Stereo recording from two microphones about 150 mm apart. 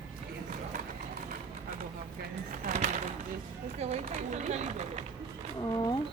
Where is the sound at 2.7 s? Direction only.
55° right (ahead or behind).